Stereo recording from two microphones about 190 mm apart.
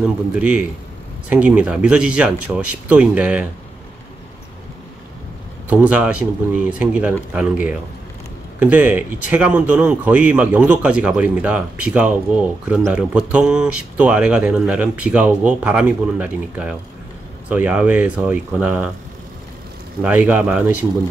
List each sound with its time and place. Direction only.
0.0 s speech: 5° right (ahead or behind)
5.7 s speech: 10° right (ahead or behind)
20.0 s speech: 10° right (ahead or behind)